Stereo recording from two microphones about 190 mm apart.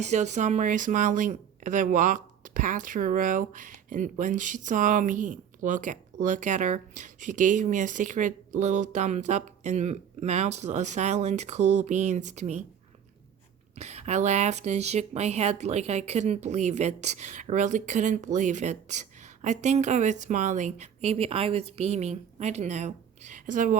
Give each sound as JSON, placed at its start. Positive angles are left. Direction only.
{"t": 0.0, "sound": "speech", "side_deg": -40}
{"t": 13.7, "sound": "speech", "side_deg": -35}